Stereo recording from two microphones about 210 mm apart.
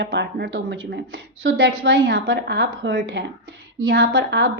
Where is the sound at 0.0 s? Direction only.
55° right (ahead or behind).